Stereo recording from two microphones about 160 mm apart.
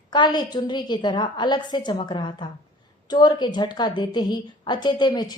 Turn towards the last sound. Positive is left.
turn(degrees=25)  # may be behind; listen again after turning